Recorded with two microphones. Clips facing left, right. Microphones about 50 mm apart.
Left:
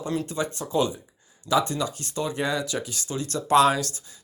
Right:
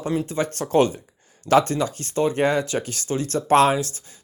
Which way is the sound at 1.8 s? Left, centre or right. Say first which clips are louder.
Right 6 dB; right.